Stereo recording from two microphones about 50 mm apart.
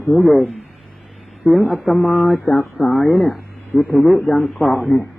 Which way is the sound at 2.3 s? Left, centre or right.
Centre.